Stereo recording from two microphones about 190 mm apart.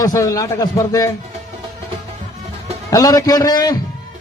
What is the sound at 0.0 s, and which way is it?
A man's voice, 20° left (ahead or behind).